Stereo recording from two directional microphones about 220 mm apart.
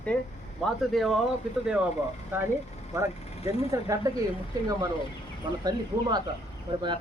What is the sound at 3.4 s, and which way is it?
Speech, 30° left (ahead or behind).